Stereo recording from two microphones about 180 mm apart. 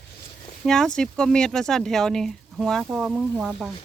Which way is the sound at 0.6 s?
5° left (ahead or behind).